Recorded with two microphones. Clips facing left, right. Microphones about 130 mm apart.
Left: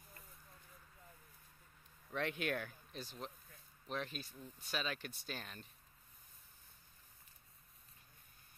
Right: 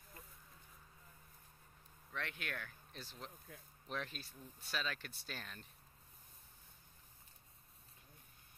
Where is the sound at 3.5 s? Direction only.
90° right.